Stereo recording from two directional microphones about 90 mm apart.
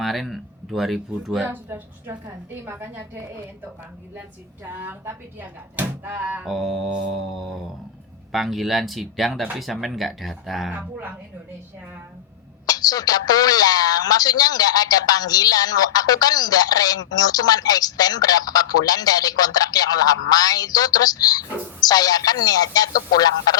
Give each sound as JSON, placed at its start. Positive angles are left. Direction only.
{"t": 0.0, "sound": "speech", "side_deg": 0}
{"t": 1.5, "sound": "speech", "side_deg": -25}
{"t": 4.6, "sound": "speech", "side_deg": -25}
{"t": 6.4, "sound": "speech", "side_deg": 0}
{"t": 10.7, "sound": "a woman's voice", "side_deg": -15}
{"t": 12.6, "sound": "speech", "side_deg": 45}